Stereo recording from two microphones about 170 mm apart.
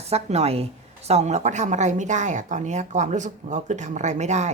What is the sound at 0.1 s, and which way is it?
A woman's voice, 40° right (ahead or behind).